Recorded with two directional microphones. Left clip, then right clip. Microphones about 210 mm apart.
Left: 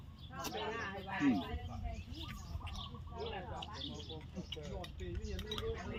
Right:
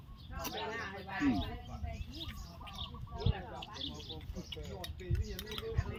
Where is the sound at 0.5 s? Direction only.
20° right (ahead or behind).